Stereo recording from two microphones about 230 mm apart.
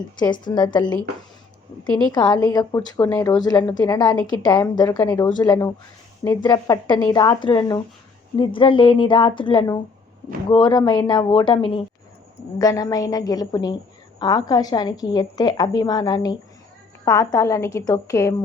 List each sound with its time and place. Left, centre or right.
0.2 s a woman's voice: centre
2.1 s a woman's voice: centre